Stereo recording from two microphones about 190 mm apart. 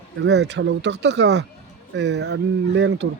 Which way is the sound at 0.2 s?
65° right (ahead or behind).